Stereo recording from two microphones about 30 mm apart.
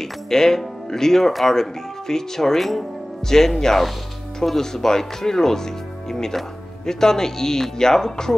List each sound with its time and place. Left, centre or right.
0.0 s speech: centre